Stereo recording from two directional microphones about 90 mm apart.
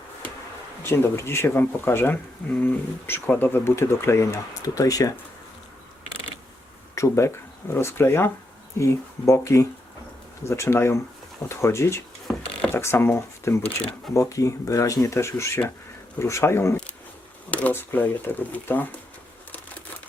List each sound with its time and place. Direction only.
0.8 s speech: 30° left (ahead or behind)
4.6 s speech: 40° left (ahead or behind)
6.9 s speech: 35° left (ahead or behind)
12.3 s mechanisms: 15° left (ahead or behind)
12.7 s speech: 30° left (ahead or behind)
17.5 s speech: 20° left (ahead or behind)